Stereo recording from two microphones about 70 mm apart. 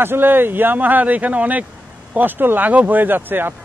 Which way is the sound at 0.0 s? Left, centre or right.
Right.